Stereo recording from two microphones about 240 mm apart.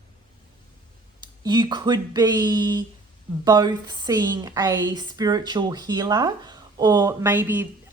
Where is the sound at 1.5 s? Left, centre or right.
Centre.